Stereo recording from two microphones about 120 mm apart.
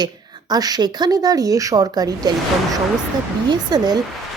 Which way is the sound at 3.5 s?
35° right (ahead or behind).